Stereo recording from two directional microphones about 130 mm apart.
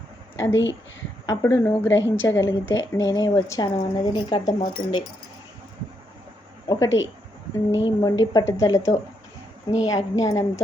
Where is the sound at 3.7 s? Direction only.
40° left (ahead or behind).